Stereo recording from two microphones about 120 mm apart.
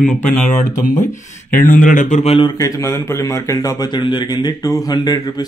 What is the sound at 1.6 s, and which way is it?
Speech, 90° left.